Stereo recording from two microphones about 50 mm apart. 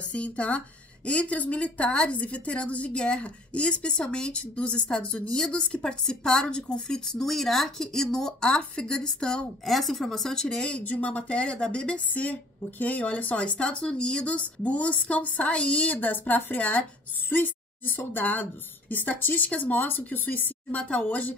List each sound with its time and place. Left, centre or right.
0.0 s a woman's voice: left
9.7 s speech: centre
10.8 s a woman's voice: left
16.5 s a woman's voice: left
17.3 s a woman's voice: left